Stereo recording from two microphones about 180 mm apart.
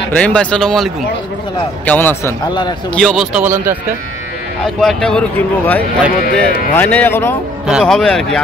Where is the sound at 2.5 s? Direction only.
25° left (ahead or behind).